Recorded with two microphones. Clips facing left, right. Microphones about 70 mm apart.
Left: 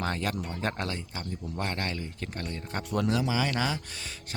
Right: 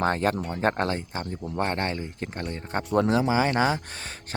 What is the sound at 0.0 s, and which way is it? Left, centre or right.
Speech, right.